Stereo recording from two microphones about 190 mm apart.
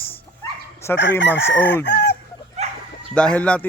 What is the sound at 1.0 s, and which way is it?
Chicken, 70° left (ahead or behind).